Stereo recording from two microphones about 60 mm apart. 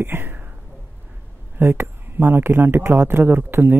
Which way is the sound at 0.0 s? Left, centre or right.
Right.